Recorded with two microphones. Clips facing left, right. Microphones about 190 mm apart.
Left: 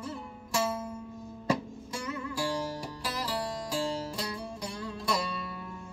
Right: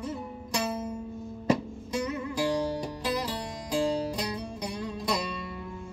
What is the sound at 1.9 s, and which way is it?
Music, 20° right (ahead or behind).